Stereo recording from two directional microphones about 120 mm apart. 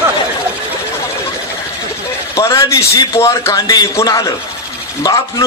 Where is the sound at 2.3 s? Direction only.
25° left (ahead or behind).